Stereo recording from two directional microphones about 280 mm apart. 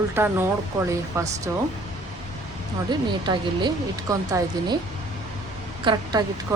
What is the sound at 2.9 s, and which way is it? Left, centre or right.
A woman's voice, centre.